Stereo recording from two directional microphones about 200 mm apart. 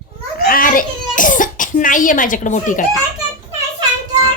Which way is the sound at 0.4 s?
45° left (ahead or behind).